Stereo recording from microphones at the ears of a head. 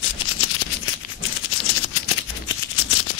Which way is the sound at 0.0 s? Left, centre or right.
Left.